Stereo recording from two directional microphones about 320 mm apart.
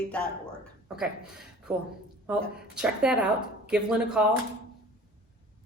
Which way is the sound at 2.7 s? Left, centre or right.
Centre.